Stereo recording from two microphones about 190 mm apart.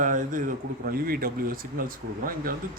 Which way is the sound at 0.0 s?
45° right (ahead or behind).